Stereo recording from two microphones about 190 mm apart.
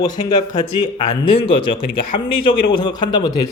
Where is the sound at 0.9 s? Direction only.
30° left (ahead or behind).